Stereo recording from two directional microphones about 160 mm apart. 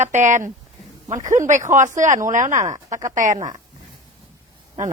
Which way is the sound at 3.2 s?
55° right (ahead or behind).